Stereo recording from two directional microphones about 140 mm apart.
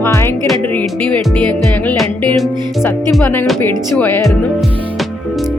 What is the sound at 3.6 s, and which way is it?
Music, 15° left (ahead or behind).